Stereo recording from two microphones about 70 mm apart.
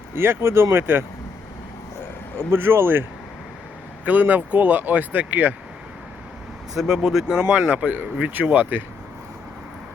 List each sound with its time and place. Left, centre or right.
0.1 s speech: right
2.5 s speech: right
6.7 s speech: centre; by 8.8 s right